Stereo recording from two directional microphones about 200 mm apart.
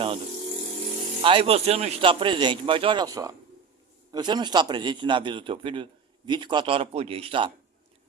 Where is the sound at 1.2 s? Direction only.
25° right (ahead or behind).